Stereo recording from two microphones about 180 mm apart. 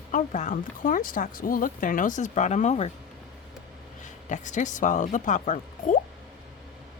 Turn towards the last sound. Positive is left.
turn(degrees=45)  # may be behind; listen again after turning